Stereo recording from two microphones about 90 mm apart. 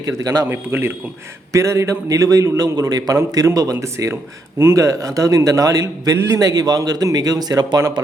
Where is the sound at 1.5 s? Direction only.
35° right (ahead or behind).